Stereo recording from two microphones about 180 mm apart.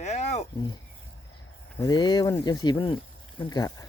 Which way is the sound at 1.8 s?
25° left (ahead or behind).